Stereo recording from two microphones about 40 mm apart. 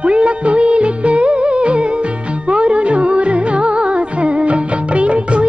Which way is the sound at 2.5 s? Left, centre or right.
Right.